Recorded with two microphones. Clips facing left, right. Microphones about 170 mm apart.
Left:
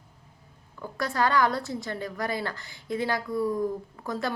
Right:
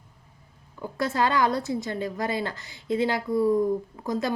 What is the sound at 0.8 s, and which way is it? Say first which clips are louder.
A woman's voice: right 2 dB; 20° right (ahead or behind).